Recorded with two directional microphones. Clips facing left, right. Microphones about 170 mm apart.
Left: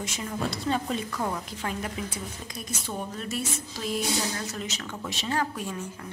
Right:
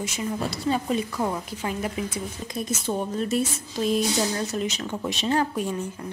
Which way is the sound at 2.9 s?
30° right (ahead or behind).